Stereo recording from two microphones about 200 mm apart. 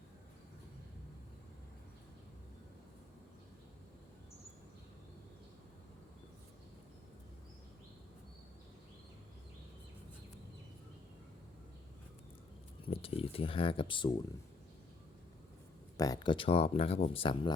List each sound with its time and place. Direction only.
12.8 s speech: 30° left (ahead or behind)
16.0 s speech: 20° left (ahead or behind)